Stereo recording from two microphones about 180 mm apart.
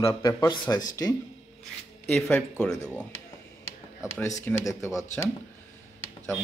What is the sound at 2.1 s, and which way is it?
A man's voice, 10° left (ahead or behind).